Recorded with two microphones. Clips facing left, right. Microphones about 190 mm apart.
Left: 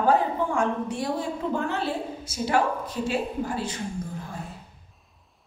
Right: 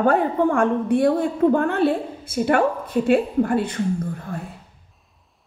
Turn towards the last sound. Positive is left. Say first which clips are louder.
# right 8 dB
turn(degrees=-60)  # may be behind; listen again after turning